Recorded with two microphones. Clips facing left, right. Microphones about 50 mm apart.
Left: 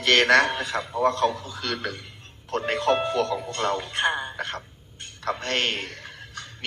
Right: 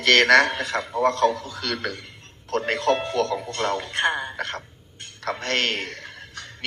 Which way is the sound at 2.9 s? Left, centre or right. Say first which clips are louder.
Even; left.